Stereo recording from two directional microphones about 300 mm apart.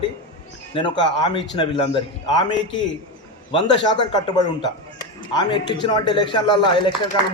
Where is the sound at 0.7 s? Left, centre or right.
Centre.